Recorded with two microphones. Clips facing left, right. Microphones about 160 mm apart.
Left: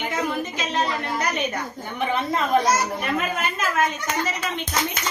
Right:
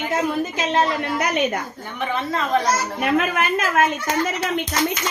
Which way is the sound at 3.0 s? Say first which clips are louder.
Right 5 dB; 65° right (ahead or behind).